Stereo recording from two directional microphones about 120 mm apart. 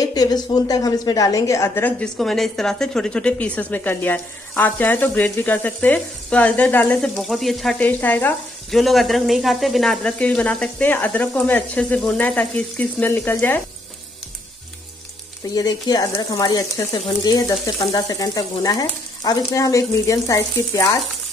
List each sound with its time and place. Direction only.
0.0 s speech: 35° left (ahead or behind); by 2.0 s 15° left (ahead or behind)
2.1 s speech: centre (ahead or behind)
7.2 s speech: centre (ahead or behind)
7.8 s speech: 15° left (ahead or behind)
8.6 s speech: centre (ahead or behind)
15.5 s speech: 30° left (ahead or behind)
17.9 s frying: 30° left (ahead or behind)